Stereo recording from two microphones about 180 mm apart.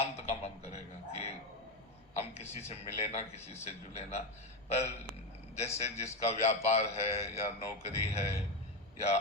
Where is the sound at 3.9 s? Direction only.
35° left (ahead or behind).